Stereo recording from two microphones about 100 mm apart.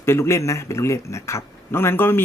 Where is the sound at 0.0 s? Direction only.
25° left (ahead or behind).